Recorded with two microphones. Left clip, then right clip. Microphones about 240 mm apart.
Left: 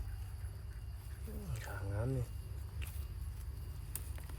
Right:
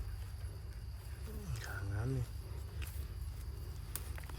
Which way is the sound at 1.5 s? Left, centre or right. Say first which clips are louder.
Even; centre.